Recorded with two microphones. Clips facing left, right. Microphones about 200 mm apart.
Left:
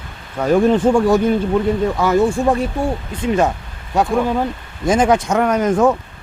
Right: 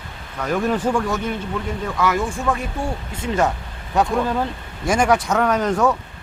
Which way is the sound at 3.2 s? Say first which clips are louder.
Left 3 dB; 20° left (ahead or behind).